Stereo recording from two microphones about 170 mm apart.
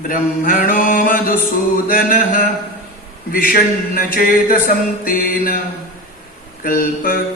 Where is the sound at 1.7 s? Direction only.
55° left (ahead or behind).